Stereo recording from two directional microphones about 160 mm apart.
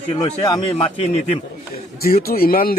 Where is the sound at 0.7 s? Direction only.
40° left (ahead or behind).